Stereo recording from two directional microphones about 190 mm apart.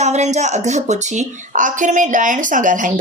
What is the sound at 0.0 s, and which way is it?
Speech, 35° right (ahead or behind).